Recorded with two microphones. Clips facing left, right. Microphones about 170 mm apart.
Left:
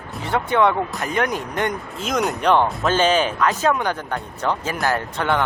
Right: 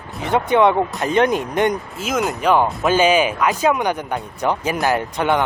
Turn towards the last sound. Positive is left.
turn(degrees=-15)  # may be behind; listen again after turning